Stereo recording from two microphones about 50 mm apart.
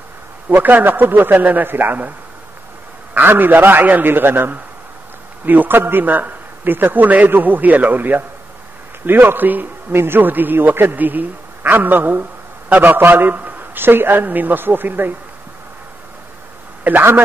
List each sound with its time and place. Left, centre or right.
0.5 s a man's voice: right
3.2 s a man's voice: right